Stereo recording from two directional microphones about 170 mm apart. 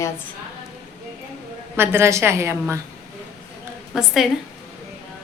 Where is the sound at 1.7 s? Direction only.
15° right (ahead or behind).